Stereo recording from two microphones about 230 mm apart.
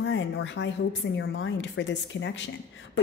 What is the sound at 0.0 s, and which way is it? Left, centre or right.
A woman's voice, left.